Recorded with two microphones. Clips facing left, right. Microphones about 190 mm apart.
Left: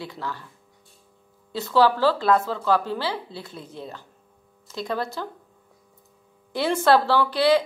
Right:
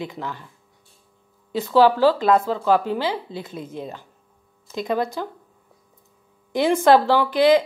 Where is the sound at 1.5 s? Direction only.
15° right (ahead or behind).